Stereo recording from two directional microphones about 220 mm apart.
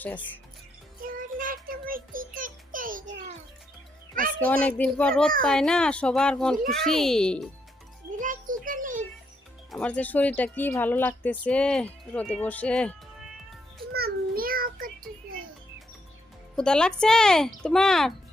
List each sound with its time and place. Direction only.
1.0 s child singing: 40° right (ahead or behind)
4.8 s speech: 5° left (ahead or behind)
8.1 s a sound: 35° right (ahead or behind)
9.7 s a woman's voice: 5° left (ahead or behind)
13.9 s a sound: 45° right (ahead or behind)
16.6 s speech: 5° left (ahead or behind)